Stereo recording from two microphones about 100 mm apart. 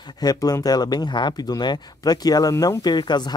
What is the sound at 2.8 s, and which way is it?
Speech, 45° left (ahead or behind).